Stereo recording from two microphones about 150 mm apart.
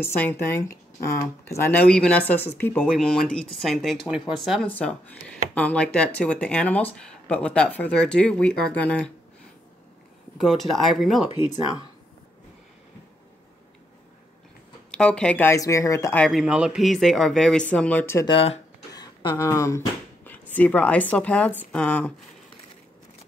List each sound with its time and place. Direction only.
0.2 s speech: 15° left (ahead or behind)
10.3 s speech: centre (ahead or behind)
14.9 s speech: 5° left (ahead or behind); by 16.2 s 20° left (ahead or behind)
16.2 s speech: centre (ahead or behind)
18.2 s speech: 35° left (ahead or behind); by 22.1 s 10° left (ahead or behind)